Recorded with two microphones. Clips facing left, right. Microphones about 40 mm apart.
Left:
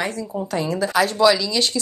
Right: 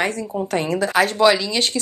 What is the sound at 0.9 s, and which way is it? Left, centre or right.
Speech, right.